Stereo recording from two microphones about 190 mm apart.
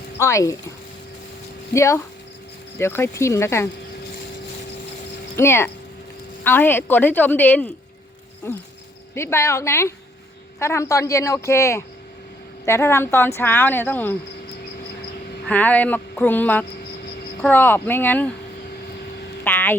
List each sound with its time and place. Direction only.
0.2 s speech: 15° left (ahead or behind)
1.7 s speech: 15° left (ahead or behind)
5.4 s speech: 10° left (ahead or behind)
9.1 s speech: 15° left (ahead or behind)
15.4 s speech: 10° left (ahead or behind)
19.5 s vehicle: 10° left (ahead or behind)